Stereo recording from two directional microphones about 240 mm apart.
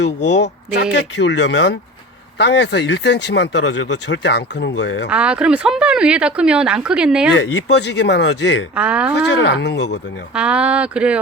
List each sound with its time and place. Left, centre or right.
0.0 s speech: left
5.0 s speech: centre
7.3 s speech: left
8.7 s speech: centre
9.1 s speech: left
10.3 s speech: centre